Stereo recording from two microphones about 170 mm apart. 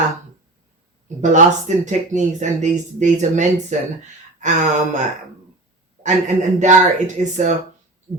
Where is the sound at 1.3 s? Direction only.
45° right (ahead or behind).